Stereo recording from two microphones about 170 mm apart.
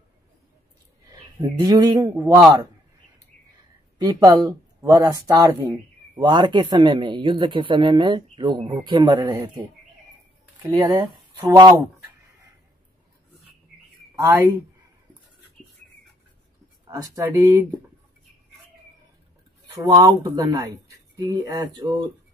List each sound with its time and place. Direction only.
1.4 s speech: 20° right (ahead or behind)
4.0 s speech: 20° right (ahead or behind)
10.7 s speech: 25° right (ahead or behind)
14.1 s speech: 20° right (ahead or behind)
15.6 s a sound: 5° left (ahead or behind)
16.8 s speech: 20° right (ahead or behind)
19.7 s speech: 25° right (ahead or behind)